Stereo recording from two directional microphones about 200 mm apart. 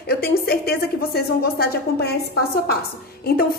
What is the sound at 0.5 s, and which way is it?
A woman's voice, 50° left (ahead or behind).